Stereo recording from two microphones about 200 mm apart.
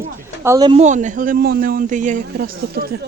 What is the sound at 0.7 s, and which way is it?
A man's voice, 35° right (ahead or behind).